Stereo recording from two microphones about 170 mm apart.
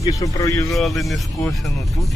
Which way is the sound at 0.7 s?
Centre (ahead or behind).